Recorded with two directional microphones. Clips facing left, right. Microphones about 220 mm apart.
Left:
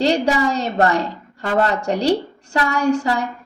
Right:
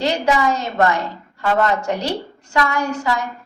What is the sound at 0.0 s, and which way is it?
A woman's voice, 35° left (ahead or behind).